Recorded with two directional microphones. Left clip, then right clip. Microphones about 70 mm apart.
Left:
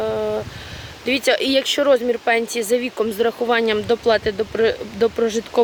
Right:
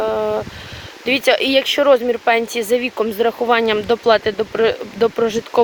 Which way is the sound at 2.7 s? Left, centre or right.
Left.